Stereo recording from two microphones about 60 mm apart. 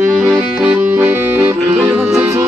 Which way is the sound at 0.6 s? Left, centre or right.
Right.